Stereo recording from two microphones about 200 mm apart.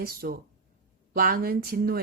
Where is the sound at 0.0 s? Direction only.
50° right (ahead or behind).